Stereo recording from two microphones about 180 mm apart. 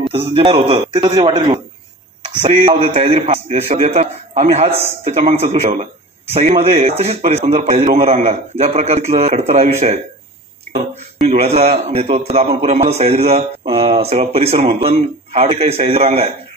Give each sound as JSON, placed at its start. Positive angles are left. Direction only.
{"t": 0.3, "sound": "a man's voice", "side_deg": -30}
{"t": 2.6, "sound": "speech", "side_deg": -30}
{"t": 11.2, "sound": "speech", "side_deg": -35}